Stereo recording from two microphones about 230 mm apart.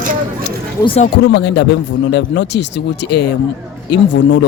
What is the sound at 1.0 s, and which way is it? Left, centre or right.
Speech, left.